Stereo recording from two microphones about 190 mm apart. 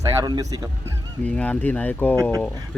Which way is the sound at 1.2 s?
5° left (ahead or behind).